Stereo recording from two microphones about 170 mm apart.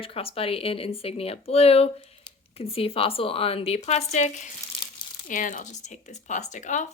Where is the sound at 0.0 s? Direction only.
35° left (ahead or behind).